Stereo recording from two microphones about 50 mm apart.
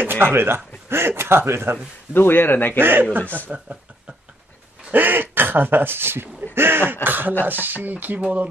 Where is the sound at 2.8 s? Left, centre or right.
Right.